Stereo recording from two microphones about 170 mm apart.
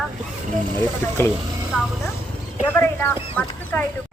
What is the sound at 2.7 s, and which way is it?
Speech, 10° left (ahead or behind).